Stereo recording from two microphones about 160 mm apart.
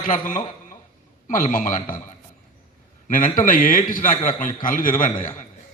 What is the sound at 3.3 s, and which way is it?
A man's voice, 60° left (ahead or behind).